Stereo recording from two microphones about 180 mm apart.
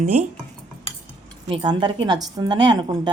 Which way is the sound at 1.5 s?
25° right (ahead or behind).